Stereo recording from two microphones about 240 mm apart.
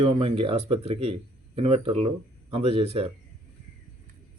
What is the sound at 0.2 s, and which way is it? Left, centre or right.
Speech, right.